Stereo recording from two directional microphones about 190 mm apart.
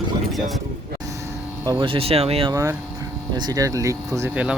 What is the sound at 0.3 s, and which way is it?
Speech, centre (ahead or behind).